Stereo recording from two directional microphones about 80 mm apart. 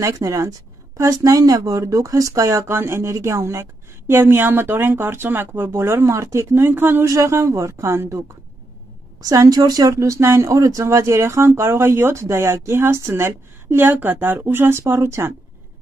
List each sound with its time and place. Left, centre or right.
0.0 s speech: right
7.1 s speech: right
9.2 s speech: right